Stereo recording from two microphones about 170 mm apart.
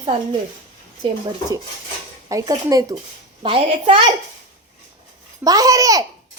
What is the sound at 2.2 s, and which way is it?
Speech, 20° right (ahead or behind).